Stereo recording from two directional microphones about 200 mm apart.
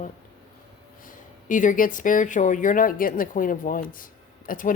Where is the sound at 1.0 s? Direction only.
40° left (ahead or behind).